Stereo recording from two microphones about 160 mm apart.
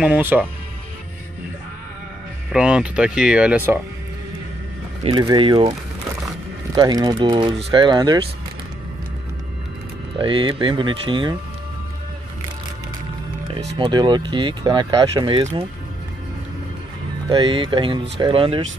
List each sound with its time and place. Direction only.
0.0 s speech: 10° right (ahead or behind)
2.5 s speech: 5° right (ahead or behind)
5.2 s speech: 30° right (ahead or behind)
10.1 s speech: 30° right (ahead or behind)
13.7 s speech: 30° right (ahead or behind)
17.3 s speech: 30° right (ahead or behind)